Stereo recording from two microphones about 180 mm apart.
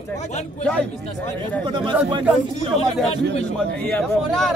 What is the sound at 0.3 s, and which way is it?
Speech, 40° left (ahead or behind).